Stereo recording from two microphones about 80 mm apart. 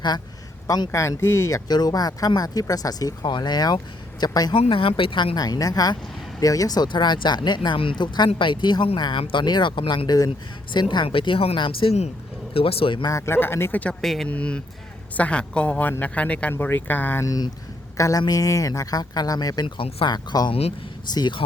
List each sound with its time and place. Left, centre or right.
0.9 s speech: left
5.4 s speech: left
6.8 s speech: left
13.1 s speech: left
14.0 s speech: centre
14.3 s speech: centre
17.9 s a woman's voice: left
19.6 s speech: left